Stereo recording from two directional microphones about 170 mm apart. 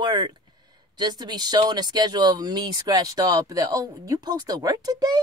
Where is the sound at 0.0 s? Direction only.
25° right (ahead or behind).